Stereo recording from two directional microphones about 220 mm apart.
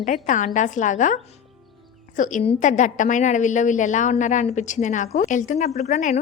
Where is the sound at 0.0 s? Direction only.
35° left (ahead or behind).